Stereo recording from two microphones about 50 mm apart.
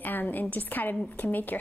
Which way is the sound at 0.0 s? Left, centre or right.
Left.